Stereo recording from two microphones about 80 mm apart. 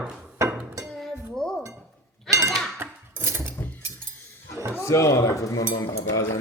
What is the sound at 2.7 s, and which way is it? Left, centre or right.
Cutlery, right.